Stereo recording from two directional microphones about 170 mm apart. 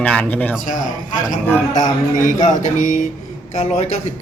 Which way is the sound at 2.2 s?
50° left (ahead or behind).